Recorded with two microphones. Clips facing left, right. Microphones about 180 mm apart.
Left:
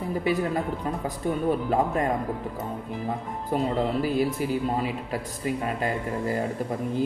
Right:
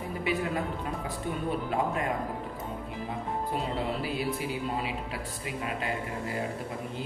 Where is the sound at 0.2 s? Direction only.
40° left (ahead or behind).